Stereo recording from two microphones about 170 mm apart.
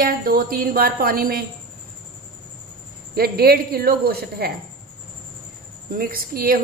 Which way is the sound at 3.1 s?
65° right (ahead or behind).